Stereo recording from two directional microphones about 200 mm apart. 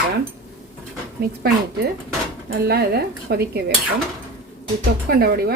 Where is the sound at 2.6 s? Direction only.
50° right (ahead or behind).